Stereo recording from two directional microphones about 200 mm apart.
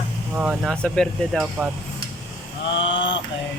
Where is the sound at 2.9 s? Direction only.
65° left (ahead or behind).